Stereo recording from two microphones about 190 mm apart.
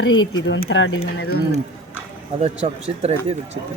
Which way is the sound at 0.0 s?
85° left.